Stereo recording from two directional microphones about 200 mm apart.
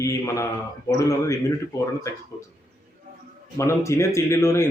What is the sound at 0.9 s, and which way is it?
Speech, 15° left (ahead or behind).